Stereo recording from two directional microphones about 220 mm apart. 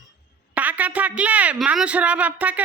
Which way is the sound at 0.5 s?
5° right (ahead or behind).